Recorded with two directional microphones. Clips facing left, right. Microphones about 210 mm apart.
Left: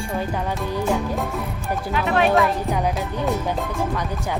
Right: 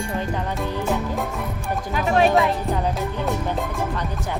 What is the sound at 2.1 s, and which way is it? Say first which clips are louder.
Speech: right 1 dB; 35° right (ahead or behind).